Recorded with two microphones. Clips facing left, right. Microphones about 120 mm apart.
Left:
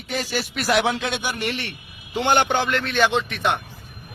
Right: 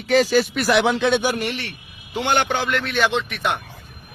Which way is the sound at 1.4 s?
Centre (ahead or behind).